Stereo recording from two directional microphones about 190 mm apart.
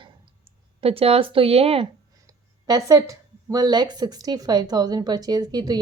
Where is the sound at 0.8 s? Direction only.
30° right (ahead or behind).